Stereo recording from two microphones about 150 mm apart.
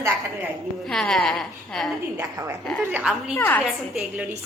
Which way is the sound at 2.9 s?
10° right (ahead or behind).